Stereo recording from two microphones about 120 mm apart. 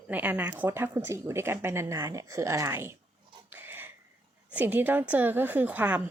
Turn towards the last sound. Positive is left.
turn(degrees=-15)  # may be behind; listen again after turning